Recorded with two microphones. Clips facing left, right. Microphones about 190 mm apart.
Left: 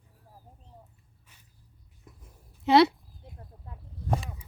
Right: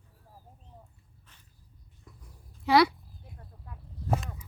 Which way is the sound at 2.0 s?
25° left (ahead or behind).